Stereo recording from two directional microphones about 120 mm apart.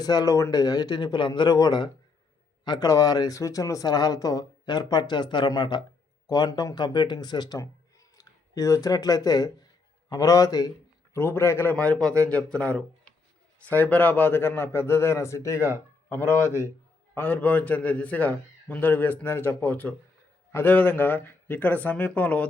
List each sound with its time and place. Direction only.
0.0 s speech: 30° left (ahead or behind)
11.1 s a man's voice: 20° left (ahead or behind)